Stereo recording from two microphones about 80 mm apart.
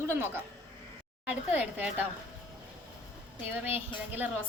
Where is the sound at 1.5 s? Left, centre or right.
Right.